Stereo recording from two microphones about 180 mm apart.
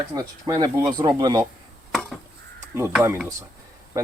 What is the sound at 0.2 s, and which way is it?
Speech, 20° right (ahead or behind).